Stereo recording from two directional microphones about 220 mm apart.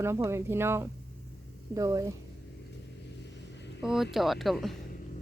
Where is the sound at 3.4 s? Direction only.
50° left (ahead or behind).